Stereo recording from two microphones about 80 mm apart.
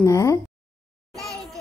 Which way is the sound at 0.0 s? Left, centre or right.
Left.